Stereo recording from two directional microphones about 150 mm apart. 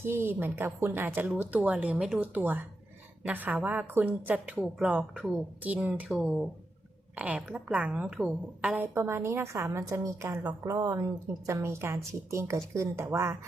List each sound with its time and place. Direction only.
0.0 s a woman's voice: 15° right (ahead or behind)